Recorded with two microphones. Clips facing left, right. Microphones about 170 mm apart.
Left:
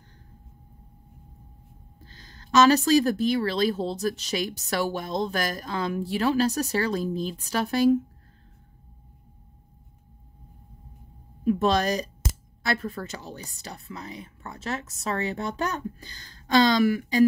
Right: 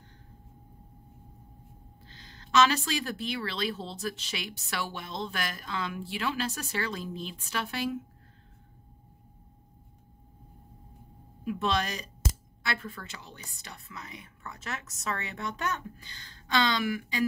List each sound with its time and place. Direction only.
2.0 s speech: 40° left (ahead or behind)
11.4 s speech: 40° left (ahead or behind)